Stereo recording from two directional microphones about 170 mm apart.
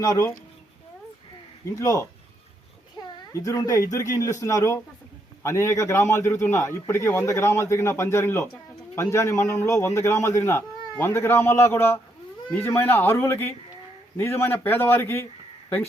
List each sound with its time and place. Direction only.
0.0 s speech: 20° left (ahead or behind)
1.7 s a man's voice: 20° left (ahead or behind)